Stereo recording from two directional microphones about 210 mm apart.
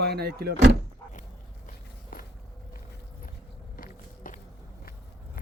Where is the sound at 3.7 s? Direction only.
40° left (ahead or behind).